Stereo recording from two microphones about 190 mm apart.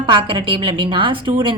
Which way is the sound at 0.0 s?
25° right (ahead or behind).